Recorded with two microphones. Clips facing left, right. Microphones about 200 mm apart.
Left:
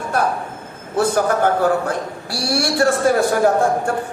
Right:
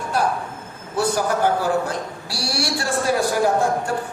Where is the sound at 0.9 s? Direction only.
55° left (ahead or behind).